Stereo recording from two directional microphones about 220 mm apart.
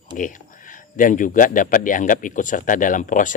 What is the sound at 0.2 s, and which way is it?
Speech, 35° left (ahead or behind).